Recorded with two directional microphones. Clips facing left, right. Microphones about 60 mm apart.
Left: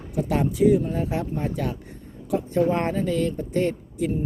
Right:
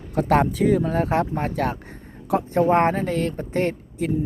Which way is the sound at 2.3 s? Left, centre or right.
Right.